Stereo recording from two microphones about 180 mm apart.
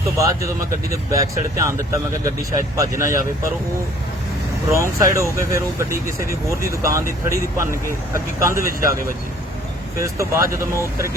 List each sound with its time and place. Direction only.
0.2 s speech: 15° right (ahead or behind)
4.7 s speech: 15° right (ahead or behind)
10.0 s speech: 15° right (ahead or behind)